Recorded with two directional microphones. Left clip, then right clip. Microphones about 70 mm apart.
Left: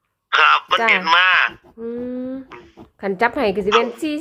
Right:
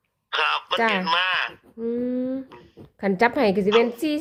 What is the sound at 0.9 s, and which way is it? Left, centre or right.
Speech, centre.